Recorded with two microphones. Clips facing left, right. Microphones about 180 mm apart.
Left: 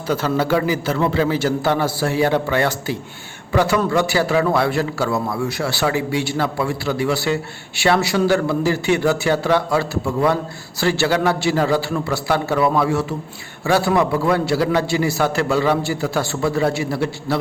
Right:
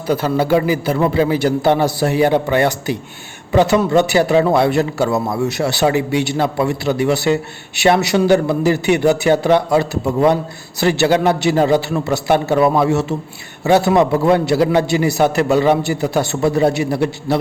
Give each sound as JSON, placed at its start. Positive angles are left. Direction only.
{"t": 0.1, "sound": "a man's voice", "side_deg": -15}